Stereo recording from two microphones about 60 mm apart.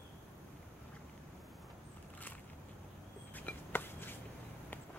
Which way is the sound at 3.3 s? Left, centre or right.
Left.